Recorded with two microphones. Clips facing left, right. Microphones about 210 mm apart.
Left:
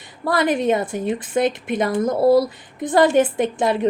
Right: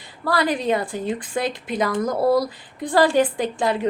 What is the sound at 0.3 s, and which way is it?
A woman's voice, 20° left (ahead or behind).